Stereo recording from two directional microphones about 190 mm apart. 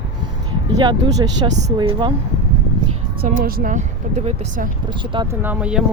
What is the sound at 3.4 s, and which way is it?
Speech, 50° right (ahead or behind).